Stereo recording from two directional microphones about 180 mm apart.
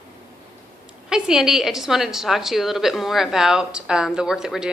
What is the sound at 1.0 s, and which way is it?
A woman's voice, 5° right (ahead or behind).